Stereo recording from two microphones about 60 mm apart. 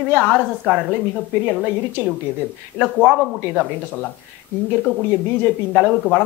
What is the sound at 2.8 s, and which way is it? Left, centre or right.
Speech, centre.